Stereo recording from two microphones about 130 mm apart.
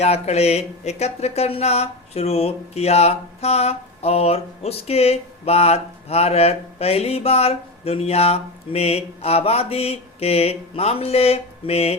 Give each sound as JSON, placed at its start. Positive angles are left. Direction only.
{"t": 0.0, "sound": "speech", "side_deg": 55}